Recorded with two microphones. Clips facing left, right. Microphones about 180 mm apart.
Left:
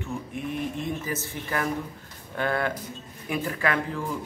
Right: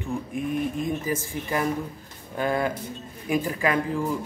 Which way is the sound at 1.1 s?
15° right (ahead or behind).